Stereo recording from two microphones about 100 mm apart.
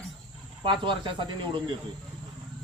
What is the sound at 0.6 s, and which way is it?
Speech, 55° right (ahead or behind).